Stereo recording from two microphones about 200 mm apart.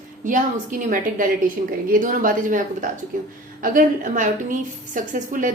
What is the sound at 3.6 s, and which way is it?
A woman's voice, 40° right (ahead or behind).